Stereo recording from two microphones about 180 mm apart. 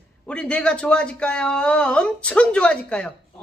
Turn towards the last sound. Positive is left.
turn(degrees=5)  # may be behind; listen again after turning